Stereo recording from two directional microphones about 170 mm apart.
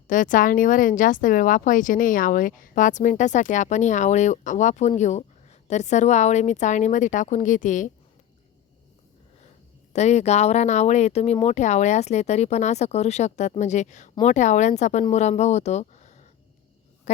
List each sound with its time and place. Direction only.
0.1 s speech: 50° left (ahead or behind)
9.9 s speech: 40° left (ahead or behind)